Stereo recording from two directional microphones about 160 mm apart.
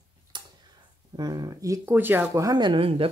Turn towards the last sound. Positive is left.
turn(degrees=-35)  # may be behind; listen again after turning